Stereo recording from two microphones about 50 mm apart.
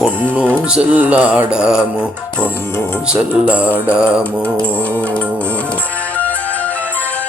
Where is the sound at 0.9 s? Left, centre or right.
Right.